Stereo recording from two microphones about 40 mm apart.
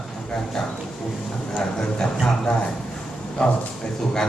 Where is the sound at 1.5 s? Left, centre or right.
Centre.